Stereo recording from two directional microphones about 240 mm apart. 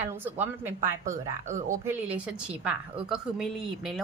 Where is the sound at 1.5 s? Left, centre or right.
Right.